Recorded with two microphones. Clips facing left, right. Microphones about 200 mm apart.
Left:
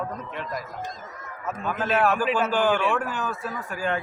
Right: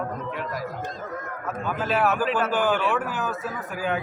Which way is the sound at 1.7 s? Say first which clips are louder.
Left 1 dB; 5° right (ahead or behind).